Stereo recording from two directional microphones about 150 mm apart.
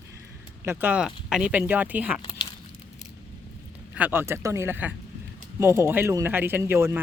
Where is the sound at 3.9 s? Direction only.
10° right (ahead or behind).